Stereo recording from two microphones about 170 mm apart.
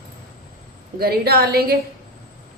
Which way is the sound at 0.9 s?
65° right (ahead or behind).